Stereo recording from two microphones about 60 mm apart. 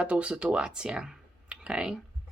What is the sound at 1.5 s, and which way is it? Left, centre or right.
Clicking, centre.